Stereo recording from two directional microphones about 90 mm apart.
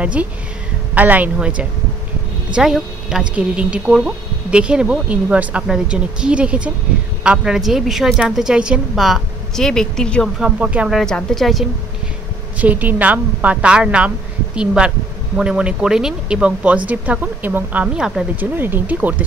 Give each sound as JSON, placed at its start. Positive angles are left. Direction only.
{"t": 0.0, "sound": "a woman's voice", "side_deg": -15}
{"t": 10.4, "sound": "a woman's voice", "side_deg": -10}
{"t": 11.0, "sound": "a woman's voice", "side_deg": 5}
{"t": 12.5, "sound": "a woman's voice", "side_deg": -15}
{"t": 17.9, "sound": "a woman's voice", "side_deg": -5}
{"t": 18.3, "sound": "speech", "side_deg": -20}